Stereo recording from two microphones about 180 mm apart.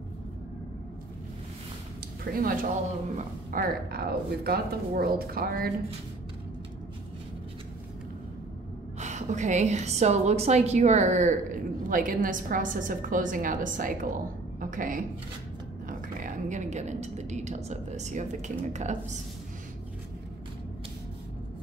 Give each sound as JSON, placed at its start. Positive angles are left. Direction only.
{"t": 2.3, "sound": "a woman's voice", "side_deg": -50}
{"t": 9.0, "sound": "a woman's voice", "side_deg": -40}